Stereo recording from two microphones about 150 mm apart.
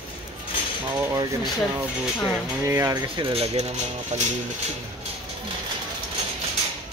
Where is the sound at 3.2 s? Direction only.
40° right (ahead or behind).